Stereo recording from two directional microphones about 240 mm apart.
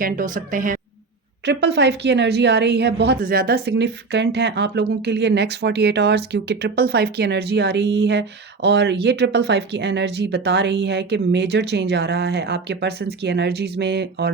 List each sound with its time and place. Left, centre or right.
0.0 s speech: right
1.5 s a woman's voice: right